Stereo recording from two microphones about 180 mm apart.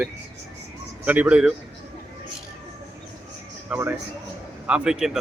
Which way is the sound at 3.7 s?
10° right (ahead or behind).